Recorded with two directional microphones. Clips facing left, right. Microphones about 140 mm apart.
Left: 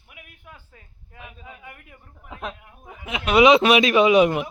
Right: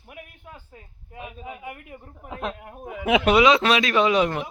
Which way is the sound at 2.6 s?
50° right (ahead or behind).